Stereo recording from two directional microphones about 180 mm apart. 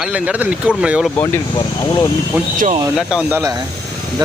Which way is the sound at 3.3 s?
20° right (ahead or behind).